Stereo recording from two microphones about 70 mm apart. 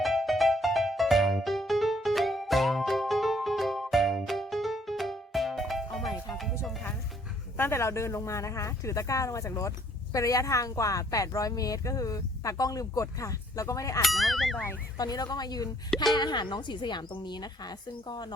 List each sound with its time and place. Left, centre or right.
0.0 s music: centre
7.5 s speech: left
14.0 s speech: centre
14.9 s a woman's voice: left
16.1 s a woman's voice: left